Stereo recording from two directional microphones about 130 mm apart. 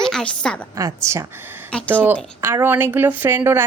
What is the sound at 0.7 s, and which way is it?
Speech, 25° right (ahead or behind).